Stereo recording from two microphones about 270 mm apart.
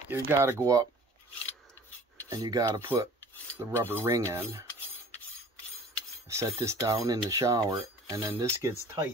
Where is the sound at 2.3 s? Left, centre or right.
Centre.